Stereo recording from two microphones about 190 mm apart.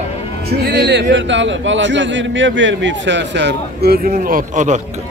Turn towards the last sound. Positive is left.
turn(degrees=-40)  # may be behind; listen again after turning